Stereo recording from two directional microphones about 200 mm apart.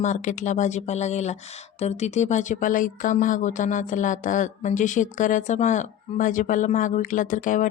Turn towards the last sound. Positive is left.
turn(degrees=40)  # may be behind; listen again after turning